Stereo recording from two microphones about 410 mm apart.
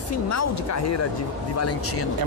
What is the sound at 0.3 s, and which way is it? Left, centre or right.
Speech, left.